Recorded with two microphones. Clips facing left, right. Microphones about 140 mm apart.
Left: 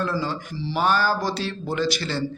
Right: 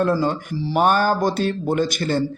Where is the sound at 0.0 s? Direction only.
50° right (ahead or behind).